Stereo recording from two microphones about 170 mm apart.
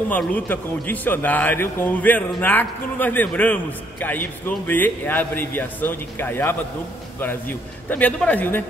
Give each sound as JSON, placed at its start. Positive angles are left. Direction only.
{"t": 0.1, "sound": "a man's voice", "side_deg": 10}